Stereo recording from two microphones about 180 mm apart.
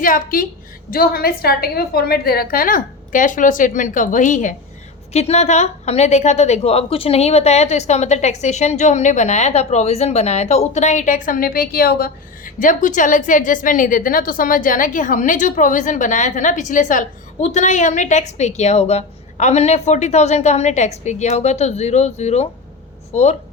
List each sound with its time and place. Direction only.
0.0 s a woman's voice: 50° left (ahead or behind)